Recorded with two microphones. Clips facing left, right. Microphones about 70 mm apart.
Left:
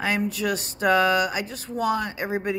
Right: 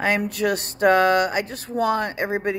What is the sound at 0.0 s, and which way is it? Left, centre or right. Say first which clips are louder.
Speech: right 3 dB; right.